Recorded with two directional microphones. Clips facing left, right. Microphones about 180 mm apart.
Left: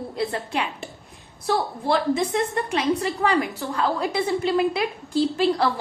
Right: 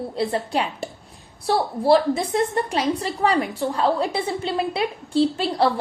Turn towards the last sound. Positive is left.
turn(degrees=-30)  # may be behind; listen again after turning